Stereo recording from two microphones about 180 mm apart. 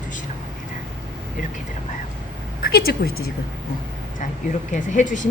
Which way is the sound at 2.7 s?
60° left (ahead or behind).